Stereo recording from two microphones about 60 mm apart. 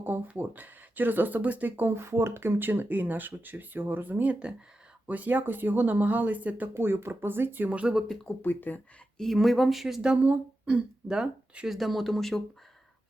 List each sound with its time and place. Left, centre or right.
0.0 s speech: right
6.7 s speech: right
7.7 s speech: right
8.0 s speech: centre
8.4 s speech: left
9.1 s speech: centre
11.1 s speech: centre
11.7 s speech: centre